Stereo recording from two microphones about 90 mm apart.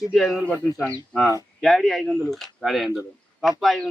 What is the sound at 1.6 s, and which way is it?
Speech, centre (ahead or behind).